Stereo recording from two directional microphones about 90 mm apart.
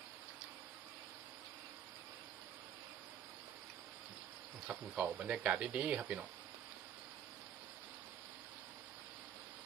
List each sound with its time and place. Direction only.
4.7 s speech: 15° right (ahead or behind)